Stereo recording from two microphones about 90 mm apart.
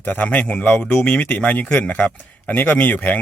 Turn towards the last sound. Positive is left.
turn(degrees=15)  # may be behind; listen again after turning